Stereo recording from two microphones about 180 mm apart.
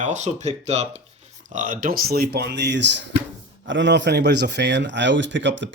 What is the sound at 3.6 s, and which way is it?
A man's voice, 90° right.